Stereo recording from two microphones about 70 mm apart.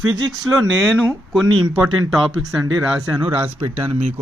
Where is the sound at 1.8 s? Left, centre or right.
Centre.